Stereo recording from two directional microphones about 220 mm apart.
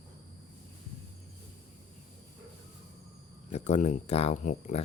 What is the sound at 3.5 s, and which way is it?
Speech, 30° left (ahead or behind).